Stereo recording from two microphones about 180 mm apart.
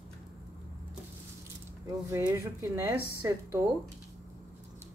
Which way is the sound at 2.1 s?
15° right (ahead or behind).